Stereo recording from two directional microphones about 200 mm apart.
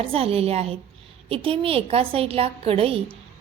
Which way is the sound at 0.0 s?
30° right (ahead or behind).